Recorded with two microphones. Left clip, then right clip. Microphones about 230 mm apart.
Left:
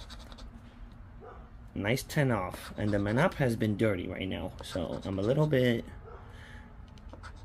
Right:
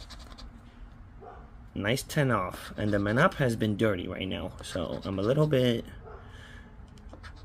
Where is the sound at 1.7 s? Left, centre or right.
Centre.